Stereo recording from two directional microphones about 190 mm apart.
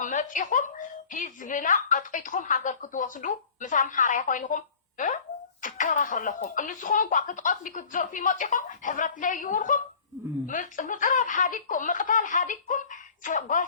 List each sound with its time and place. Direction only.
0.0 s a woman's voice: 45° left (ahead or behind)